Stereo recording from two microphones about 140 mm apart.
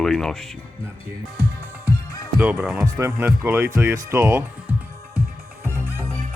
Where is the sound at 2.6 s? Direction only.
Centre (ahead or behind).